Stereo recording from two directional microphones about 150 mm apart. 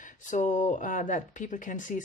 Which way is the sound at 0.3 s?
55° left (ahead or behind).